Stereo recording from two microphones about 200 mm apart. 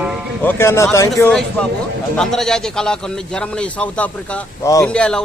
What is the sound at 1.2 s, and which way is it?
A man's voice, 5° left (ahead or behind).